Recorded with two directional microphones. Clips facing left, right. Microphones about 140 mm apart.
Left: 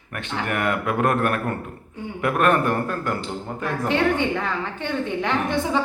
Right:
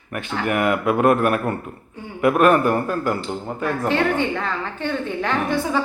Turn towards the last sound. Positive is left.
turn(degrees=20)  # may be behind; listen again after turning